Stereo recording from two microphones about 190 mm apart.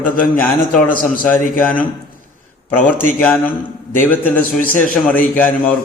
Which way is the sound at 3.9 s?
10° left (ahead or behind).